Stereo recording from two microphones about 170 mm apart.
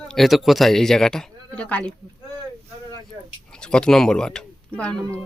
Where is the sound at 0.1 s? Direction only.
Centre (ahead or behind).